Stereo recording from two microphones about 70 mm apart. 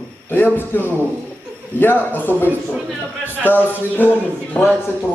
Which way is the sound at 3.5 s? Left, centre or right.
Left.